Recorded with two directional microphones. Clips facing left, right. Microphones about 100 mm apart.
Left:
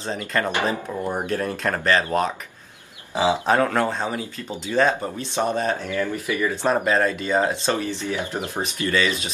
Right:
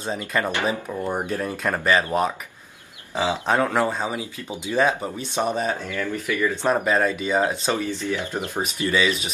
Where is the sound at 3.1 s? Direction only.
15° left (ahead or behind).